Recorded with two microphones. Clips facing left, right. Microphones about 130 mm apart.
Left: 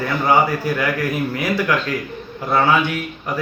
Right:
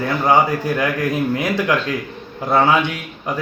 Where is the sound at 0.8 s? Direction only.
20° right (ahead or behind).